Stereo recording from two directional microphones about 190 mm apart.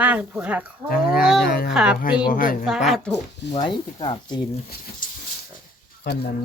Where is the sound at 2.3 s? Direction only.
45° left (ahead or behind).